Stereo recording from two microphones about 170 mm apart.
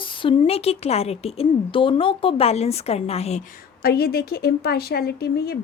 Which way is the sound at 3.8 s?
65° left (ahead or behind).